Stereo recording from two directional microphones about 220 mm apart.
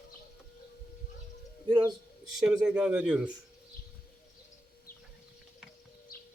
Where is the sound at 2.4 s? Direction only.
5° right (ahead or behind).